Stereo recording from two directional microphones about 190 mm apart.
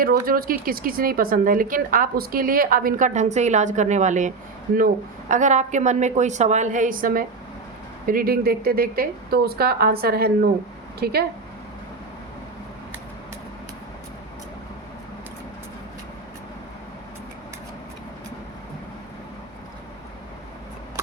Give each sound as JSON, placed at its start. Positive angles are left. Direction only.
{"t": 0.0, "sound": "speech", "side_deg": -50}
{"t": 5.3, "sound": "a woman's voice", "side_deg": -40}